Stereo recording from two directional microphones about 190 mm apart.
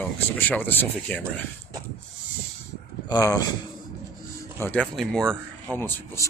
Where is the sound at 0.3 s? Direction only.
10° left (ahead or behind).